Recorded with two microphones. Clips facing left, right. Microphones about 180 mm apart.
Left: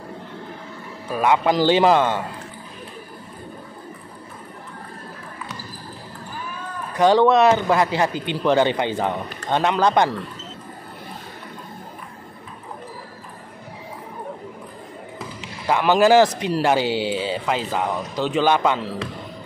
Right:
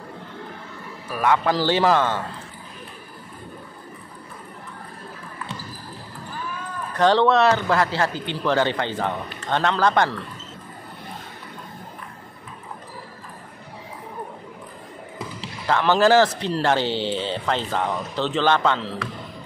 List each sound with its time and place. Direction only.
1.1 s speech: 20° left (ahead or behind)
6.9 s speech: 10° left (ahead or behind)
15.6 s speech: 15° left (ahead or behind)